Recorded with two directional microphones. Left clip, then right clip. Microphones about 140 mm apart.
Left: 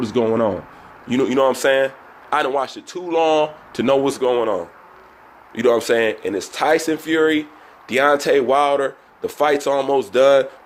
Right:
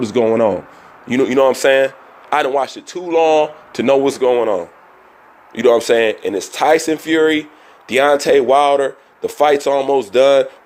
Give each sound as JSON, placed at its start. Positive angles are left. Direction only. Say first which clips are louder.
{"t": 0.0, "sound": "speech", "louder": "right 4 dB", "side_deg": -35}